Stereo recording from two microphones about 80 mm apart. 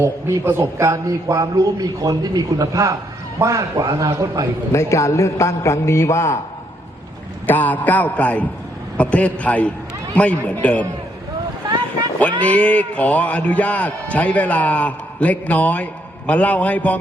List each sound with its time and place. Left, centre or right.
0.0 s a man's voice: right
1.0 s a man's voice: right
4.7 s a man's voice: left
7.4 s a man's voice: left
12.4 s speech: centre